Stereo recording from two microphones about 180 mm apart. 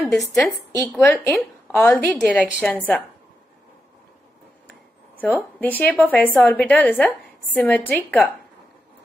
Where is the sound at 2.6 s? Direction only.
10° left (ahead or behind).